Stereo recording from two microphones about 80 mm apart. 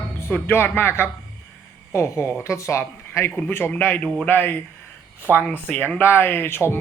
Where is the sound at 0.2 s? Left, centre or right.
Left.